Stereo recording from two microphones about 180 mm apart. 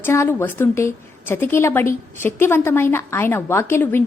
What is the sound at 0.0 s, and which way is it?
A woman's voice, 15° left (ahead or behind).